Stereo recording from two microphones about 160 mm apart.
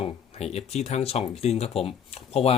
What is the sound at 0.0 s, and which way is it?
Speech, 40° left (ahead or behind).